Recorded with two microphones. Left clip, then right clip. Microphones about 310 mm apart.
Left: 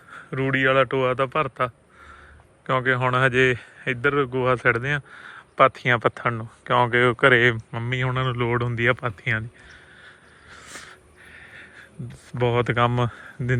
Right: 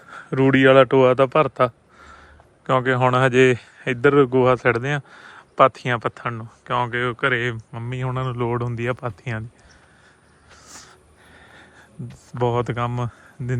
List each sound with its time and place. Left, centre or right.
0.1 s a man's voice: centre
10.7 s a sound: centre
12.4 s speech: centre